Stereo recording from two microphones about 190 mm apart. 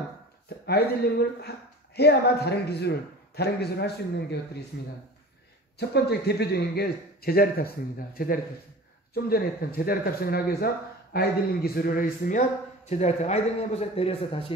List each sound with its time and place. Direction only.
0.7 s speech: 55° left (ahead or behind)
5.8 s a man's voice: 60° left (ahead or behind); by 14.4 s 30° left (ahead or behind)